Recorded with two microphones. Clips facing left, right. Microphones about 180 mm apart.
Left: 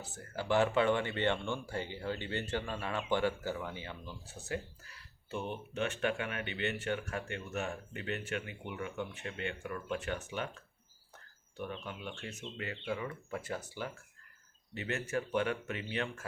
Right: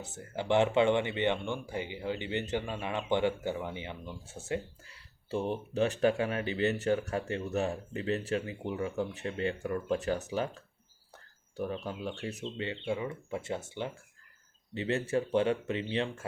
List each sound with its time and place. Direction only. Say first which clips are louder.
0.0 s speech: right 3 dB; 20° right (ahead or behind)